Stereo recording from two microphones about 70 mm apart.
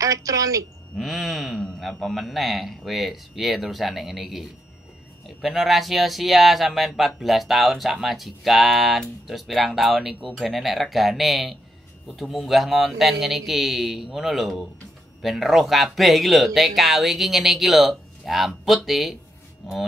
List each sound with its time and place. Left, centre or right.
0.0 s a woman's voice: right
0.9 s speech: centre